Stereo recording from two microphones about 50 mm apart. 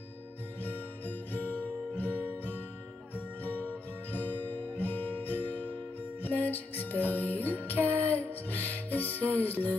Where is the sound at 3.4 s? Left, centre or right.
Left.